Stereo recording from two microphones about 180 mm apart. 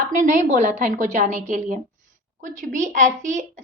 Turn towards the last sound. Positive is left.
turn(degrees=-45)  # may be behind; listen again after turning